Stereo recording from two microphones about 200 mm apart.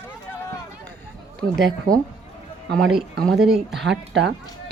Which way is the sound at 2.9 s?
Centre (ahead or behind).